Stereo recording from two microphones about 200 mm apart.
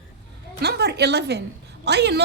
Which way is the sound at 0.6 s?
55° right (ahead or behind).